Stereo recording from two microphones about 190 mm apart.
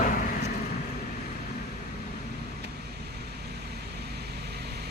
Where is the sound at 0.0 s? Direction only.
45° left (ahead or behind).